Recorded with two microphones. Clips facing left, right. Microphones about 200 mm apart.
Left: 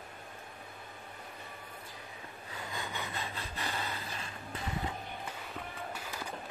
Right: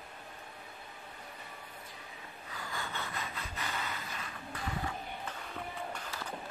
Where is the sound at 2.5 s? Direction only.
20° left (ahead or behind).